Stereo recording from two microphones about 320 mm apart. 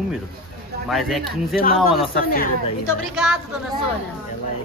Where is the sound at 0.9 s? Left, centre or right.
Centre.